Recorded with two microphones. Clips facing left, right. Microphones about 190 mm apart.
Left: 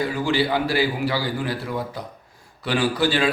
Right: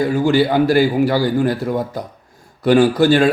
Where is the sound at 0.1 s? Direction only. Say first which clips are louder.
Right 7 dB; 45° right (ahead or behind).